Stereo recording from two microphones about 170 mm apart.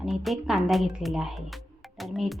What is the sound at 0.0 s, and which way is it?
Speech, centre (ahead or behind).